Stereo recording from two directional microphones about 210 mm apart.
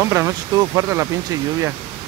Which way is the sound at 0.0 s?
15° right (ahead or behind).